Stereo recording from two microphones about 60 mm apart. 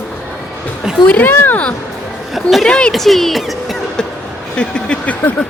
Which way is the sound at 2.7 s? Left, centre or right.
Centre.